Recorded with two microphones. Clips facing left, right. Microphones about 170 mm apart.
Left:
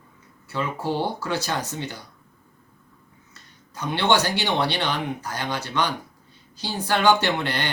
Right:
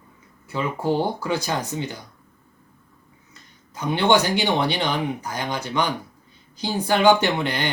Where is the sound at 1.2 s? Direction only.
15° right (ahead or behind).